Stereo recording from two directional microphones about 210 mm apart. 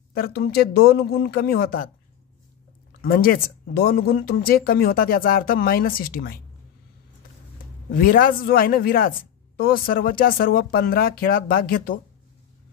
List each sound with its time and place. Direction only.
0.1 s speech: 45° left (ahead or behind)
3.0 s speech: 45° left (ahead or behind)
7.9 s speech: 45° left (ahead or behind)